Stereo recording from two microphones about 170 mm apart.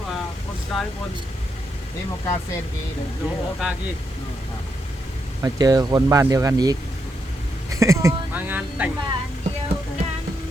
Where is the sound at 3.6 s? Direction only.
5° right (ahead or behind).